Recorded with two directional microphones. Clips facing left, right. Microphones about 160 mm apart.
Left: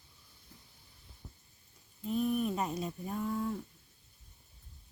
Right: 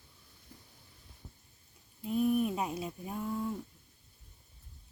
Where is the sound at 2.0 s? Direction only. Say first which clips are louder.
Right 2 dB; 5° right (ahead or behind).